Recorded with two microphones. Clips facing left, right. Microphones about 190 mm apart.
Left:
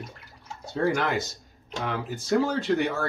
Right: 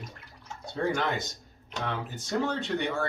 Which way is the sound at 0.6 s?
5° left (ahead or behind).